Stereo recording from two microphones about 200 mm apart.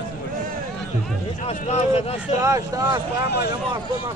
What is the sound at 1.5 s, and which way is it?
Speech, 30° left (ahead or behind).